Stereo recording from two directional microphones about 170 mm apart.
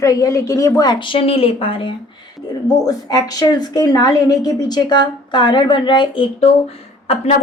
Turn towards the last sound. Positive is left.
turn(degrees=40)  # may be behind; listen again after turning